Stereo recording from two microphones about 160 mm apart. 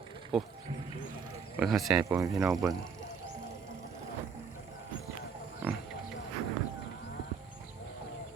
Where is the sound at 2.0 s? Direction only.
15° right (ahead or behind).